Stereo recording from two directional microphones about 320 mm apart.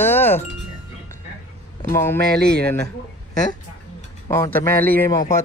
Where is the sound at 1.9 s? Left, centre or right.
Centre.